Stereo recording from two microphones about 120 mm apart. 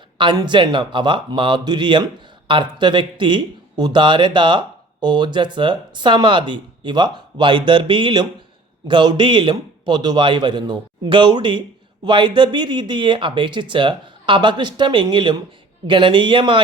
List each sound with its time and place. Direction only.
0.2 s speech: 40° right (ahead or behind)